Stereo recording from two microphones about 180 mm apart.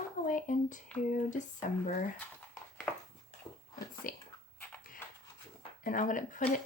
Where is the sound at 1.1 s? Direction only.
45° left (ahead or behind).